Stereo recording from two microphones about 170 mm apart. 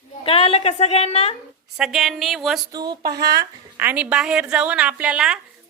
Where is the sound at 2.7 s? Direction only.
25° right (ahead or behind).